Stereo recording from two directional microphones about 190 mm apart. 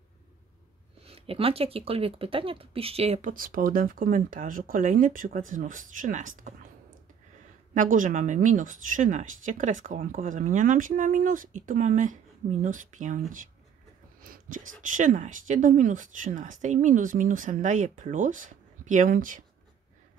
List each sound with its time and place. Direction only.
1.0 s speech: 30° right (ahead or behind)
7.7 s speech: 45° right (ahead or behind)
14.2 s speech: 45° right (ahead or behind)